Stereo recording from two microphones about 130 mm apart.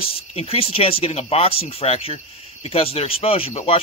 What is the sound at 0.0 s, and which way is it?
Speech, 50° left (ahead or behind).